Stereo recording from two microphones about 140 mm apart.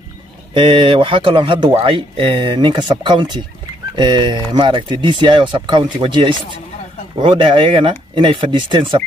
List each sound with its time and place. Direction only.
0.6 s speech: 40° right (ahead or behind)